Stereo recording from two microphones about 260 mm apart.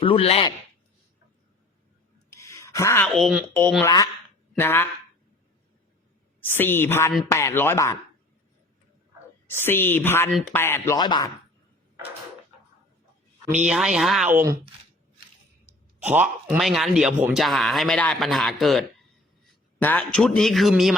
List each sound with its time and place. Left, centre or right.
0.0 s a man's voice: left
2.3 s speech: centre
6.4 s speech: centre
9.6 s speech: centre
13.7 s a man's voice: centre
16.0 s a man's voice: centre